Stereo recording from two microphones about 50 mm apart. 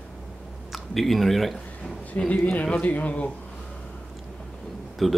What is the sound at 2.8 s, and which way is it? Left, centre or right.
Speech, left.